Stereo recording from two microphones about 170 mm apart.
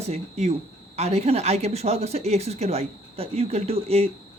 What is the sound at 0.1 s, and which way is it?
Speech, 40° right (ahead or behind).